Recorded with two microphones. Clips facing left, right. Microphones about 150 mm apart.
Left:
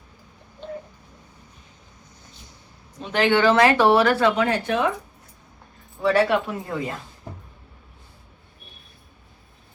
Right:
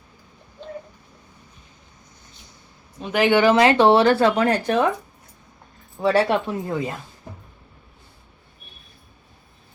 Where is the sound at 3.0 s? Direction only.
10° right (ahead or behind); by 4.8 s 40° right (ahead or behind).